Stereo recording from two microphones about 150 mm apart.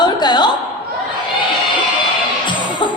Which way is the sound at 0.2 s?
30° left (ahead or behind).